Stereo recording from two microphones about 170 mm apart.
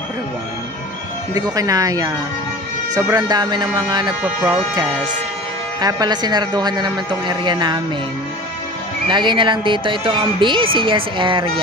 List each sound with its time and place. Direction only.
1.3 s a woman's voice: 20° right (ahead or behind)
4.2 s speech: 10° right (ahead or behind)
5.8 s a woman's voice: 20° right (ahead or behind)
9.0 s a woman's voice: 30° right (ahead or behind)